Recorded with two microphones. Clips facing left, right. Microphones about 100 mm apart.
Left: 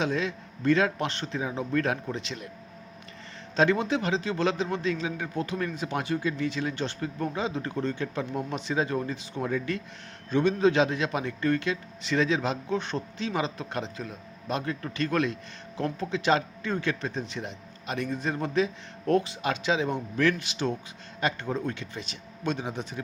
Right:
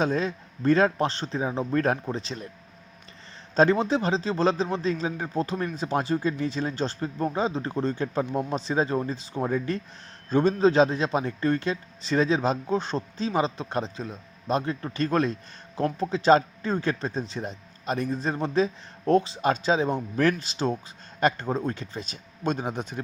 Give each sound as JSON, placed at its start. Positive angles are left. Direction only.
{"t": 0.0, "sound": "a man's voice", "side_deg": -40}
{"t": 3.5, "sound": "a man's voice", "side_deg": -35}
{"t": 21.2, "sound": "speech", "side_deg": -50}
{"t": 21.4, "sound": "speech", "side_deg": -35}